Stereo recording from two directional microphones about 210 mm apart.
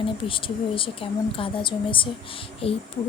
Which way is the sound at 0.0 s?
25° left (ahead or behind).